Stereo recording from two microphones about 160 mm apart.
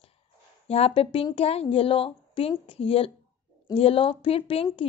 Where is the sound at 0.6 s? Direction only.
40° left (ahead or behind).